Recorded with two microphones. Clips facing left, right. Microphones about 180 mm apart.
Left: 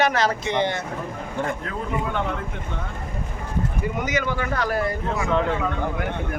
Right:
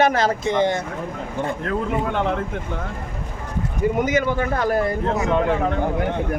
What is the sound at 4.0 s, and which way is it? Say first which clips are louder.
Speech: right 4 dB; 50° right (ahead or behind).